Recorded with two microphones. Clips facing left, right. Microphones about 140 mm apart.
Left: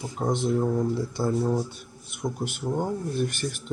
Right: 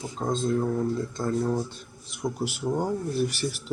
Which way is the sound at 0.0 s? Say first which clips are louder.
Left 1 dB; 15° left (ahead or behind).